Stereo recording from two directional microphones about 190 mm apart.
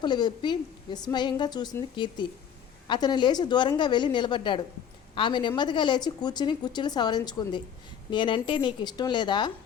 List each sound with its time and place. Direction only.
0.0 s a woman's voice: 25° left (ahead or behind)